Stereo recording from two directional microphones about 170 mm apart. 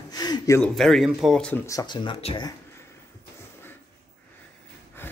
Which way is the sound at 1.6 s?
25° left (ahead or behind).